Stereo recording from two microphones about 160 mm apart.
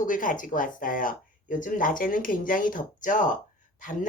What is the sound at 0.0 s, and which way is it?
Speech, 55° left (ahead or behind).